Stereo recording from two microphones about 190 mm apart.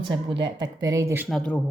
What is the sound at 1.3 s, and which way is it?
Speech, 5° left (ahead or behind).